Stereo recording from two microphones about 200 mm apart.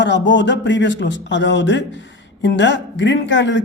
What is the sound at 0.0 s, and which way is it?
Speech, 65° left (ahead or behind).